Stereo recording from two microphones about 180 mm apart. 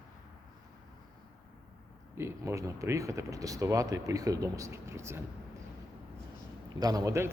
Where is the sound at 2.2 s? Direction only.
15° right (ahead or behind).